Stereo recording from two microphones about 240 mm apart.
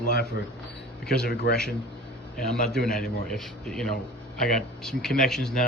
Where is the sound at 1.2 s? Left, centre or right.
Left.